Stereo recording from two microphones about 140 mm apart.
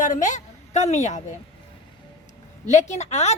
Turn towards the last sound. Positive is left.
turn(degrees=55)  # may be behind; listen again after turning